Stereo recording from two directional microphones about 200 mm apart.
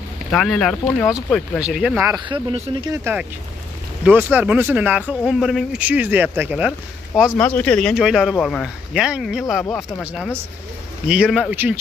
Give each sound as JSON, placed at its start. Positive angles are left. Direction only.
{"t": 0.3, "sound": "a man's voice", "side_deg": 0}
{"t": 2.2, "sound": "speech", "side_deg": -30}
{"t": 2.9, "sound": "speech", "side_deg": -10}
{"t": 7.3, "sound": "a man's voice", "side_deg": 10}